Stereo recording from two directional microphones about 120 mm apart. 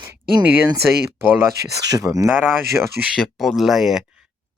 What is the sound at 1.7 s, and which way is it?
Speech, 30° right (ahead or behind).